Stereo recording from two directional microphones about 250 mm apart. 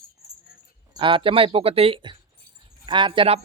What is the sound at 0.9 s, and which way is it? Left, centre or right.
Speech, centre.